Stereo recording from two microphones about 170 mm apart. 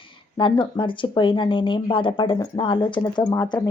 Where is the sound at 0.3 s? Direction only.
25° left (ahead or behind).